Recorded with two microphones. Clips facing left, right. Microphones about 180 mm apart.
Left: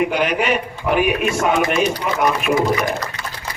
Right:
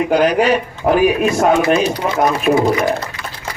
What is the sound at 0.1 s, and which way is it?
A man's voice, 40° right (ahead or behind).